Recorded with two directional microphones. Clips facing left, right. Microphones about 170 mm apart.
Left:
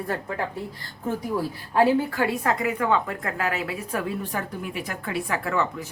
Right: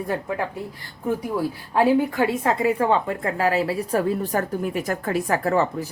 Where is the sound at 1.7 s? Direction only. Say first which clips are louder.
Right 2 dB; 20° right (ahead or behind).